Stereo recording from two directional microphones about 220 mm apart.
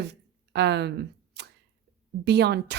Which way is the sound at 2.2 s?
50° right (ahead or behind).